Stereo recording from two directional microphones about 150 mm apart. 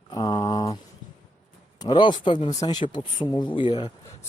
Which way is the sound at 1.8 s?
30° left (ahead or behind).